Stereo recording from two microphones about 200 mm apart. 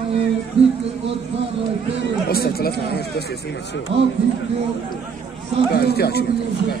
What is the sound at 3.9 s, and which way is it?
Speech, 60° right (ahead or behind).